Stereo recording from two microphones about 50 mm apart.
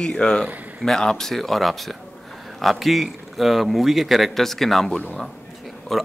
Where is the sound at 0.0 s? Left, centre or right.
Centre.